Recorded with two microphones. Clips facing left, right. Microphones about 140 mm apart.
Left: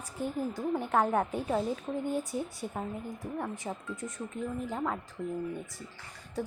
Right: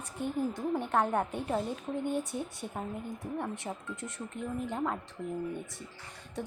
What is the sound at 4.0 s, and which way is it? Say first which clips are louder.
Speech: left 2 dB; 70° right (ahead or behind).